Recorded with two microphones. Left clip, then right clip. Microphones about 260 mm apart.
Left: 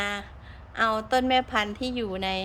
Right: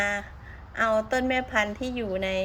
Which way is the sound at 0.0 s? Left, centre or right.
Centre.